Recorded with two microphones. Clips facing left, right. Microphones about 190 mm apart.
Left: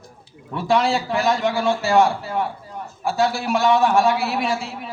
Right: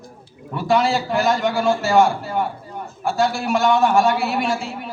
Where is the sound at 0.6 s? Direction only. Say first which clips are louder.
Right 1 dB; centre (ahead or behind).